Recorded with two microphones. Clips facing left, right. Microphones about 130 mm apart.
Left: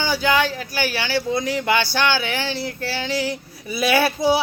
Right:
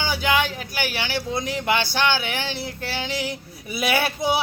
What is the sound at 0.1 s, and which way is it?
Speech, 15° right (ahead or behind).